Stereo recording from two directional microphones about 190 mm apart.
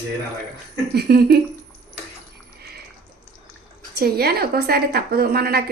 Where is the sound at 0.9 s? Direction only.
55° right (ahead or behind).